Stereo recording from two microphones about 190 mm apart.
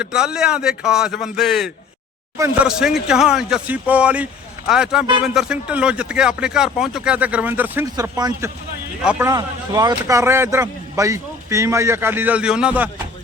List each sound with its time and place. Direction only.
0.0 s speech: 5° right (ahead or behind)